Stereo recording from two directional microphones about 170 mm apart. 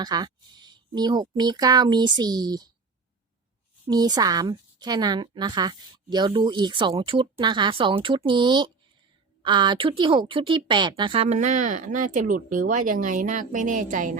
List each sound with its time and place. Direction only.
0.0 s a woman's voice: 25° right (ahead or behind)
3.8 s a woman's voice: 25° right (ahead or behind); by 14.2 s 50° right (ahead or behind)